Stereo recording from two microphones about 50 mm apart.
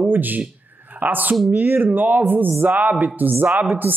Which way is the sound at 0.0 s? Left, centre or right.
Right.